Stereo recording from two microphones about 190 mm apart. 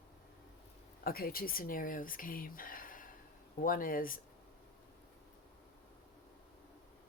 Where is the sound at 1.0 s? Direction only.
50° left (ahead or behind).